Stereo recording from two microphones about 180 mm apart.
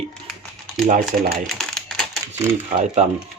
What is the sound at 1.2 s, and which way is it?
Speech, 55° right (ahead or behind).